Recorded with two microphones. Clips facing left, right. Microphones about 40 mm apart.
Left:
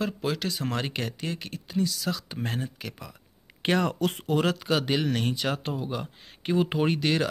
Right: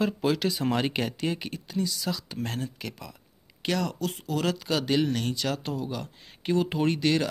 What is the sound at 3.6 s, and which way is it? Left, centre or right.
Speech, left.